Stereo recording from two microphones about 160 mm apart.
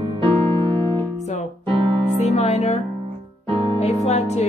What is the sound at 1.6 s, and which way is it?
Music, 35° right (ahead or behind).